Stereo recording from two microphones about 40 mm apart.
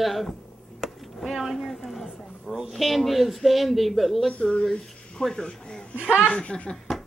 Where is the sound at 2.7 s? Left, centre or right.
Centre.